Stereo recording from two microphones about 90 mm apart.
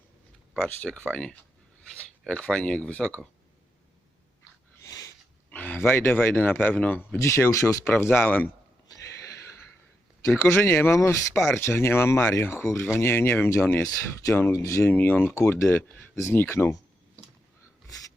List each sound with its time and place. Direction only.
0.8 s speech: 10° left (ahead or behind)
4.8 s a sound: 40° left (ahead or behind)
5.5 s speech: 20° left (ahead or behind)
7.2 s speech: 35° left (ahead or behind)
8.9 s a sound: 35° left (ahead or behind)
10.2 s speech: 30° left (ahead or behind)
14.5 s speech: 35° left (ahead or behind)
14.8 s speech: 20° left (ahead or behind)
15.4 s speech: 35° left (ahead or behind)